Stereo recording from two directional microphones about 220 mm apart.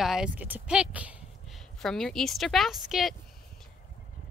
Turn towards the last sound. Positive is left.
turn(degrees=0)  # may be behind; listen again after turning